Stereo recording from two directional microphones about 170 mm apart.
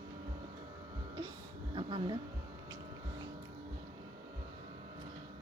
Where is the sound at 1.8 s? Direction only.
30° right (ahead or behind).